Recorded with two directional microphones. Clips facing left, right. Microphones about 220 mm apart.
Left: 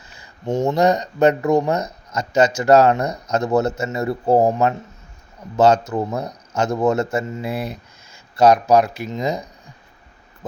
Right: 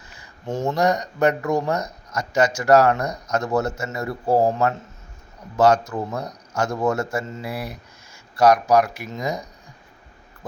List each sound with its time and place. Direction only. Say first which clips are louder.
0.2 s speech: left 5 dB; 20° left (ahead or behind)